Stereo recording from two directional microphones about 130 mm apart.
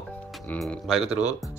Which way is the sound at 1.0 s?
55° right (ahead or behind).